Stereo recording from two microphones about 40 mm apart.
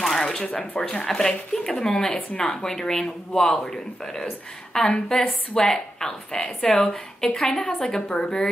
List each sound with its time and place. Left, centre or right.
0.0 s shuffling cards: centre
0.4 s speech: left
0.7 s a woman's voice: centre
7.2 s speech: centre